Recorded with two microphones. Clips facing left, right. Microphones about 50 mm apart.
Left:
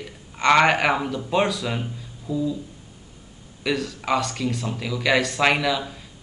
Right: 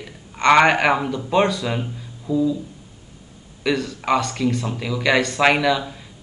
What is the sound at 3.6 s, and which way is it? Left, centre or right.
Speech, centre.